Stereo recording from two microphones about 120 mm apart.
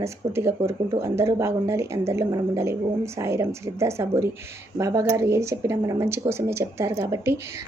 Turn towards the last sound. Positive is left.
turn(degrees=-20)  # may be behind; listen again after turning